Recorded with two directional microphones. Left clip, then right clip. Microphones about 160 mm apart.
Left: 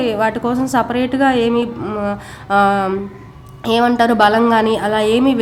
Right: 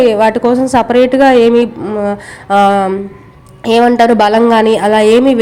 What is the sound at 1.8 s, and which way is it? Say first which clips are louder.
Speech: right 6 dB; 15° right (ahead or behind).